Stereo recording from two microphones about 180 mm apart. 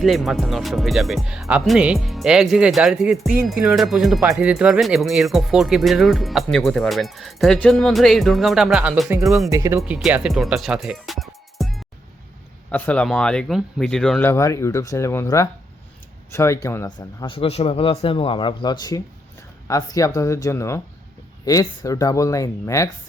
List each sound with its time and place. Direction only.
0.0 s speech: centre (ahead or behind)
9.5 s speech: 15° right (ahead or behind)
9.8 s speech: 5° right (ahead or behind)
11.5 s music: centre (ahead or behind)
12.7 s speech: 10° left (ahead or behind)